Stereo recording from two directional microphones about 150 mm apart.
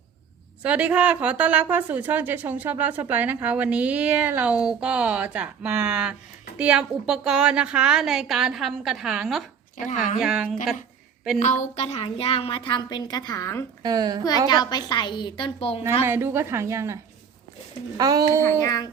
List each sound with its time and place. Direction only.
0.6 s a woman's voice: 10° right (ahead or behind)
9.7 s speech: 60° left (ahead or behind)
10.2 s a woman's voice: 5° right (ahead or behind)
11.3 s a woman's voice: 55° left (ahead or behind); by 13.7 s 20° left (ahead or behind)
13.8 s speech: 25° right (ahead or behind)
14.4 s a woman's voice: 25° left (ahead or behind)
16.0 s a woman's voice: 15° right (ahead or behind)
18.6 s a woman's voice: 25° left (ahead or behind)